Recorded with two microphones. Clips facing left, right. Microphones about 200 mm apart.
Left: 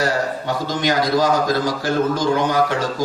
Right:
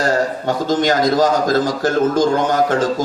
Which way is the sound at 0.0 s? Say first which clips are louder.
Right 3 dB; 50° right (ahead or behind).